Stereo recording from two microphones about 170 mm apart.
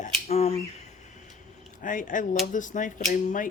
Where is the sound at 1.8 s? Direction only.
50° left (ahead or behind).